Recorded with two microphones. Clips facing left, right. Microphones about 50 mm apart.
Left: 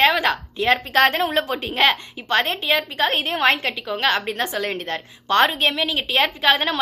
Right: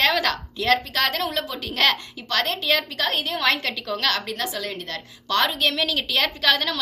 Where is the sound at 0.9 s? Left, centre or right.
Left.